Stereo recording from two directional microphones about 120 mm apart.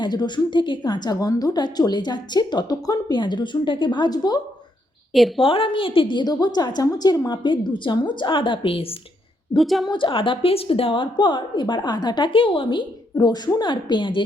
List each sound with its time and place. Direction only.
0.0 s a woman's voice: 35° left (ahead or behind)
5.1 s a woman's voice: centre (ahead or behind)
5.5 s a woman's voice: 45° left (ahead or behind)
9.6 s a woman's voice: centre (ahead or behind)
9.8 s a woman's voice: 40° left (ahead or behind)